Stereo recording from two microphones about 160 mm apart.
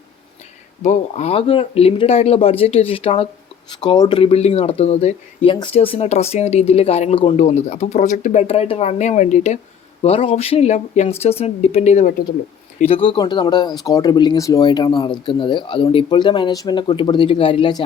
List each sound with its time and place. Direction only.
0.8 s speech: 45° left (ahead or behind); by 4.2 s 25° left (ahead or behind)
4.2 s speech: 40° left (ahead or behind)
12.8 s speech: 35° left (ahead or behind)